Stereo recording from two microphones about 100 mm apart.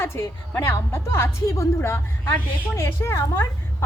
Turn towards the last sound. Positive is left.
turn(degrees=25)  # may be behind; listen again after turning